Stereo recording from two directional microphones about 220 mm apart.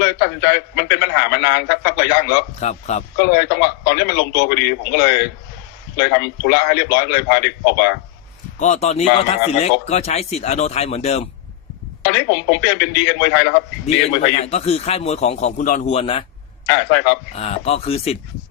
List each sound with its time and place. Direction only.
0.0 s a man's voice: 50° left (ahead or behind)
2.6 s speech: 30° left (ahead or behind)
3.2 s a man's voice: 45° left (ahead or behind)
8.5 s a man's voice: 30° left (ahead or behind)
12.0 s a man's voice: 50° left (ahead or behind)
13.9 s a man's voice: 30° left (ahead or behind)
16.6 s a man's voice: 50° left (ahead or behind)
17.3 s a man's voice: 30° left (ahead or behind)